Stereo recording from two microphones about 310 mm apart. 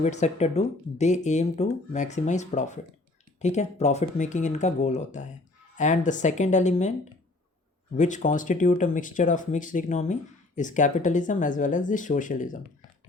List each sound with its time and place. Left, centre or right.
0.0 s speech: left
7.9 s speech: left